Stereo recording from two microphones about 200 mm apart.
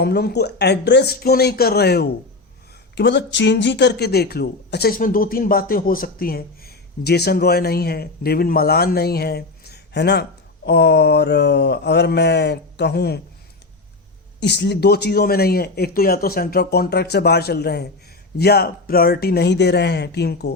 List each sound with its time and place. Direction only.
0.0 s speech: 55° left (ahead or behind)
10.7 s mantra: 55° left (ahead or behind)
14.4 s speech: 60° left (ahead or behind)
18.3 s mantra: 50° left (ahead or behind)